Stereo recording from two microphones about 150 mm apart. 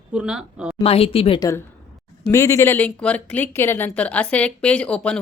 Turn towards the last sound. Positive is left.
turn(degrees=10)  # may be behind; listen again after turning